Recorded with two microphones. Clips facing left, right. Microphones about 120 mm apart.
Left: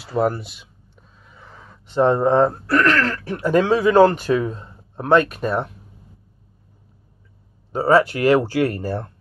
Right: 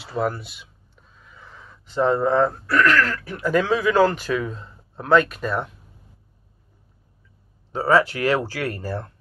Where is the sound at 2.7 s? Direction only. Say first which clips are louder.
Left 1 dB; 35° left (ahead or behind).